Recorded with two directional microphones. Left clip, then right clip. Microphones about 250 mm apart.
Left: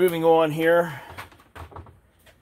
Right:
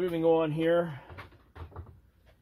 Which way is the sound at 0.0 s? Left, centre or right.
Left.